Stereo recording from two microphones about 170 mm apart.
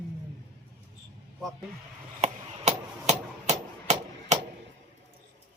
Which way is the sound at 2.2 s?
40° right (ahead or behind).